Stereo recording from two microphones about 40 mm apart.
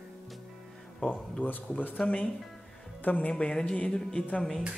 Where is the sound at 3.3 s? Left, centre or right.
Left.